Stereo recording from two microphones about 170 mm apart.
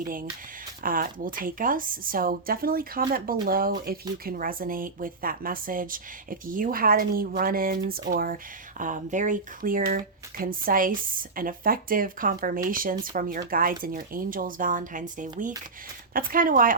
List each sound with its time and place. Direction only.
0.0 s speech: 55° right (ahead or behind)
8.8 s speech: 50° right (ahead or behind)